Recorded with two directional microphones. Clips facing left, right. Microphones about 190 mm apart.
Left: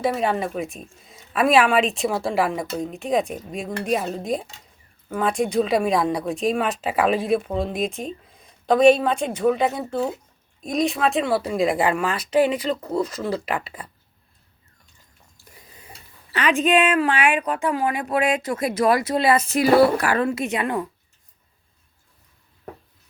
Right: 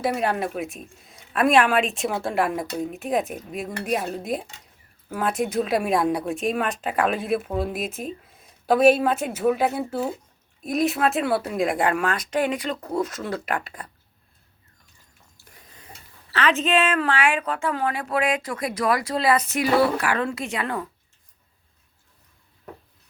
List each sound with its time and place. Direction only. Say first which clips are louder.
0.0 s a woman's voice: left 2 dB; centre (ahead or behind)
16.3 s speech: left 2 dB; 15° left (ahead or behind); by 20.2 s 35° left (ahead or behind)
20.2 s speech: left 4 dB; 20° left (ahead or behind)